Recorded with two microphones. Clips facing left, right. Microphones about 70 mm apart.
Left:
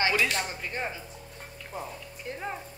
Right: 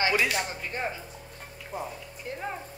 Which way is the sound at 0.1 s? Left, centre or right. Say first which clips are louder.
Right 1 dB; centre.